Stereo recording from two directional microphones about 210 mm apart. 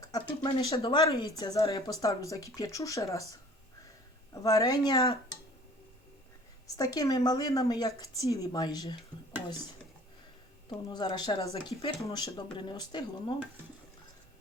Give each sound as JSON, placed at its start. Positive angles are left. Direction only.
{"t": 0.0, "sound": "speech", "side_deg": 15}
{"t": 4.4, "sound": "a woman's voice", "side_deg": 15}
{"t": 6.7, "sound": "a woman's voice", "side_deg": 15}
{"t": 10.7, "sound": "a woman's voice", "side_deg": 20}